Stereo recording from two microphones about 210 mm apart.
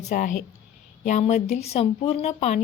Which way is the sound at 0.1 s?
40° left (ahead or behind).